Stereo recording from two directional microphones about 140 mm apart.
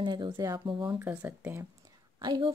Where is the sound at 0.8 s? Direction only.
15° right (ahead or behind).